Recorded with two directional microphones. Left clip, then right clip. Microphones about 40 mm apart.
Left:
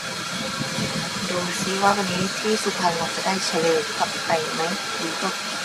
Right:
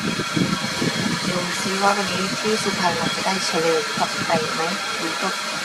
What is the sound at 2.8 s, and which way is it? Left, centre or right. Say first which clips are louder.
Speech: right 1 dB; centre.